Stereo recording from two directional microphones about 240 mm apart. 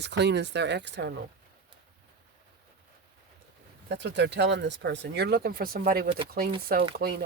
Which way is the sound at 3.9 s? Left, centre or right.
Right.